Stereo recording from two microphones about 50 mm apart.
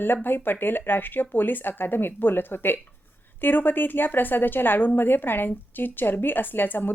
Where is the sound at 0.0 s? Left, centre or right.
Left.